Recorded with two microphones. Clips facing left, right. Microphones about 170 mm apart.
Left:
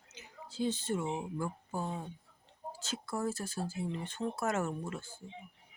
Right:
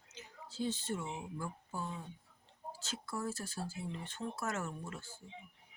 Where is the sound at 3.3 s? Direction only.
20° left (ahead or behind).